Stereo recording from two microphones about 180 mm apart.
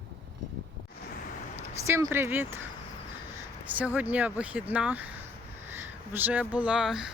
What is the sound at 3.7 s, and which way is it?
Speech, 10° right (ahead or behind).